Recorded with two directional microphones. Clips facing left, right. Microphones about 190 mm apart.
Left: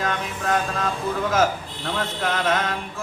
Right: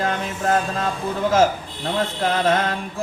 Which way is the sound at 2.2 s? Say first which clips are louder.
Right 3 dB; 30° right (ahead or behind).